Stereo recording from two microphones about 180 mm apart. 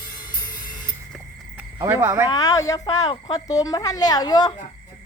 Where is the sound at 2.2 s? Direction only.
20° left (ahead or behind).